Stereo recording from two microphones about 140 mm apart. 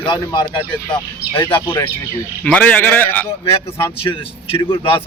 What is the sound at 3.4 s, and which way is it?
A man's voice, 40° left (ahead or behind).